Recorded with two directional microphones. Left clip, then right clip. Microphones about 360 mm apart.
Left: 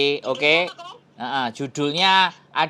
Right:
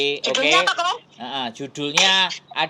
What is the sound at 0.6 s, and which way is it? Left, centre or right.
Speech, right.